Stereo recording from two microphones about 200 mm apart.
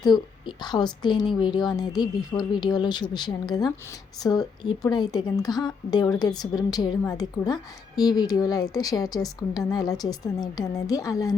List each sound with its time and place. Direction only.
0.0 s a woman's voice: 20° left (ahead or behind)